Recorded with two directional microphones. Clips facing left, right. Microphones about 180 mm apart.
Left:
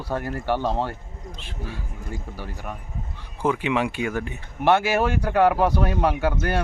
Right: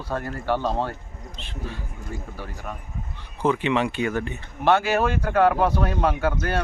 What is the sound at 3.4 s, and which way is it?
Speech, 10° left (ahead or behind).